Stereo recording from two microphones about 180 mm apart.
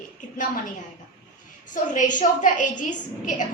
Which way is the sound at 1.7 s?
45° left (ahead or behind).